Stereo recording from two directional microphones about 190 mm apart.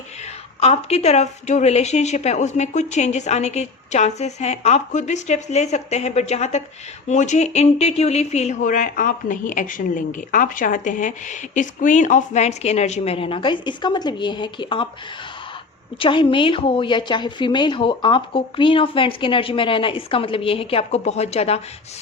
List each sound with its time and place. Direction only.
0.6 s speech: 30° left (ahead or behind)
16.0 s a woman's voice: 25° left (ahead or behind)